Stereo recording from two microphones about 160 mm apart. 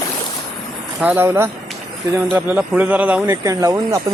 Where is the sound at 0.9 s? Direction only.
10° right (ahead or behind).